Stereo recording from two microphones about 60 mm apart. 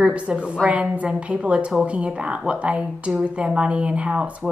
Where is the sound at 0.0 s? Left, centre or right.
Centre.